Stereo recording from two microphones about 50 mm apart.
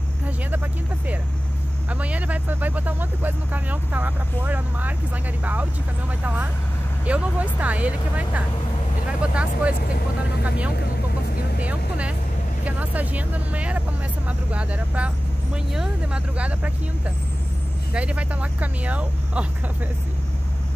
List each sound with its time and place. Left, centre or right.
1.9 s speech: right
11.6 s speech: right
15.7 s speech: centre
16.3 s speech: right
17.9 s speech: right